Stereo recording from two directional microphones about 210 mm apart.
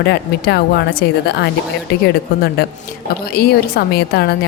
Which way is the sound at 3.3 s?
45° left (ahead or behind).